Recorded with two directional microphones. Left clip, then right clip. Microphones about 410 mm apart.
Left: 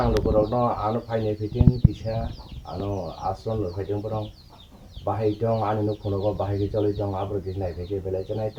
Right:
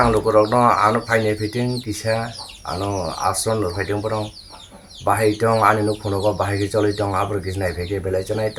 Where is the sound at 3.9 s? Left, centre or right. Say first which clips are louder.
Right 6 dB; left.